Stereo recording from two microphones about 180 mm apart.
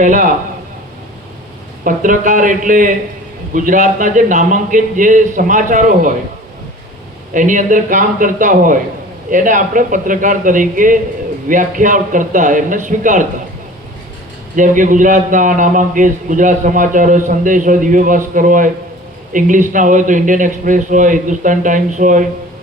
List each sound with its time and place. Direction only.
0.0 s a man's voice: 45° right (ahead or behind)
1.8 s a man's voice: 45° right (ahead or behind)
7.3 s a man's voice: 45° right (ahead or behind)
14.5 s a man's voice: 45° right (ahead or behind)